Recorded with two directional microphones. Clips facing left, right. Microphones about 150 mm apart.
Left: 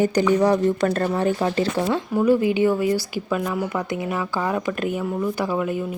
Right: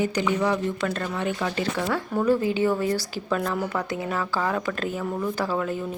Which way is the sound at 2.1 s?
15° left (ahead or behind).